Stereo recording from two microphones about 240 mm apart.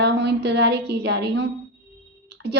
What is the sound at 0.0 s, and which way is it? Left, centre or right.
A woman's voice, right.